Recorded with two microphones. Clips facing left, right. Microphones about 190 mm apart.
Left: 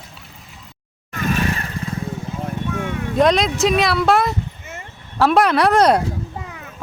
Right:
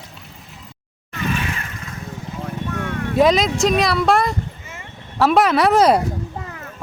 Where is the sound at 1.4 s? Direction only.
35° left (ahead or behind).